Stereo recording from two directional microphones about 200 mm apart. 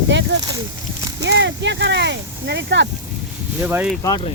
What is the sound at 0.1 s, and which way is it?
Speech, 60° right (ahead or behind).